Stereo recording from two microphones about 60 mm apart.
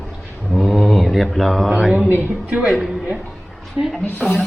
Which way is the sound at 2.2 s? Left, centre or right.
Centre.